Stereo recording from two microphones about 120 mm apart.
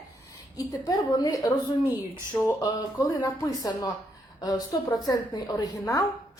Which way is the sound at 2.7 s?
35° left (ahead or behind).